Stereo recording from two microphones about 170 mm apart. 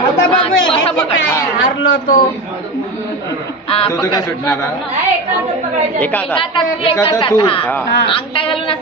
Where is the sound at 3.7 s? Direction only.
35° left (ahead or behind).